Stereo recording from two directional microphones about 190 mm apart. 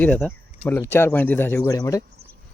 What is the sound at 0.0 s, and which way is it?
Speech, 10° left (ahead or behind).